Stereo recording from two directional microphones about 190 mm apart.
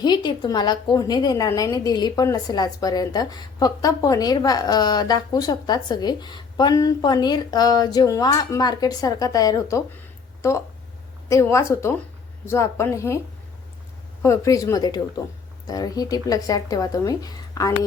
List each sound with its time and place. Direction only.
0.0 s a woman's voice: 20° left (ahead or behind)
14.2 s a woman's voice: 15° left (ahead or behind)